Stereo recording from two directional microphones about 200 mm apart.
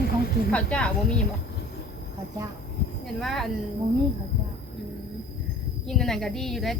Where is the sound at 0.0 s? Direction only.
50° left (ahead or behind).